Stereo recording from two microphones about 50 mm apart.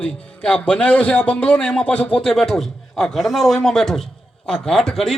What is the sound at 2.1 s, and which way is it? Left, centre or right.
A man's voice, centre.